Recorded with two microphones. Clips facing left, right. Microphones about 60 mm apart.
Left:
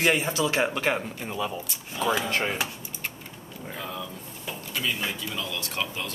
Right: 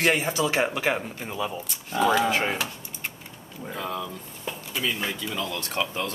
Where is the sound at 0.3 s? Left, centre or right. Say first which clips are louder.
Right 1 dB; centre.